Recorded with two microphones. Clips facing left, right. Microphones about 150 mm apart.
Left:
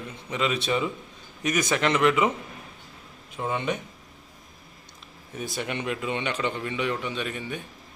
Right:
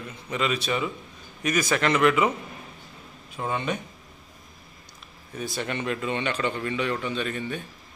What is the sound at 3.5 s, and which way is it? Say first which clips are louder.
Speech: even; 20° left (ahead or behind).